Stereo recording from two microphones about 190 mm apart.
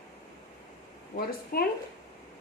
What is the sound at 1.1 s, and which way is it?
Speech, 50° left (ahead or behind).